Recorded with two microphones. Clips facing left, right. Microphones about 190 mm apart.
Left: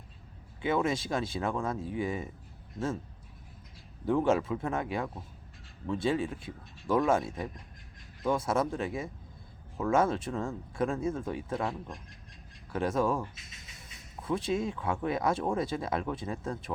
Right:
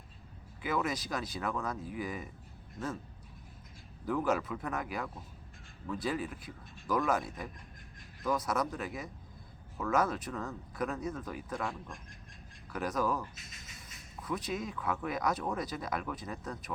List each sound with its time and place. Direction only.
0.6 s speech: 25° left (ahead or behind)
4.0 s speech: 25° left (ahead or behind)